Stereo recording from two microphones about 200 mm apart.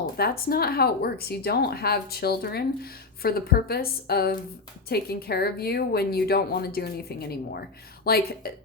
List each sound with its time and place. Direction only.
0.0 s speech: 50° left (ahead or behind)